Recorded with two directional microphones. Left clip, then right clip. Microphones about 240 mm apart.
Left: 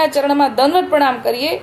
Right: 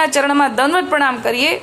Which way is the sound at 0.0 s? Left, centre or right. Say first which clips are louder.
Even; centre.